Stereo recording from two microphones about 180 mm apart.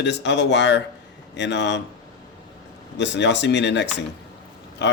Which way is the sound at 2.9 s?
75° left (ahead or behind).